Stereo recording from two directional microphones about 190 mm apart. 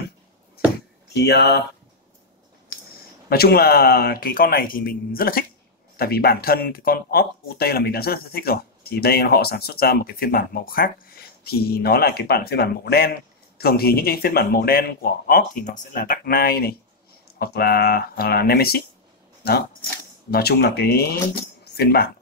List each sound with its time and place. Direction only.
1.1 s speech: 60° left (ahead or behind)
3.3 s speech: 55° left (ahead or behind)
20.2 s speech: 55° left (ahead or behind)